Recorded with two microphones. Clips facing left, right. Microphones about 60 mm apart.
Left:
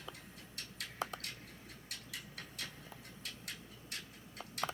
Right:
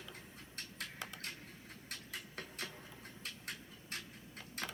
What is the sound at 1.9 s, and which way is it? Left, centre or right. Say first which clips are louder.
Music: right 1 dB; right.